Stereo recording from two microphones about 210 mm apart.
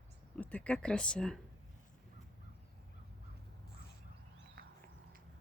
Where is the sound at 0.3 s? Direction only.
5° left (ahead or behind).